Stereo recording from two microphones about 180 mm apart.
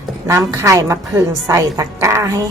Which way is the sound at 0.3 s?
15° right (ahead or behind).